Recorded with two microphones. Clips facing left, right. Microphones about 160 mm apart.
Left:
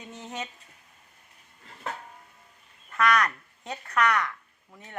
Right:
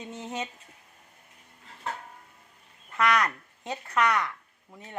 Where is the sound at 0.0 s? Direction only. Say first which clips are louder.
Right 3 dB; 25° right (ahead or behind).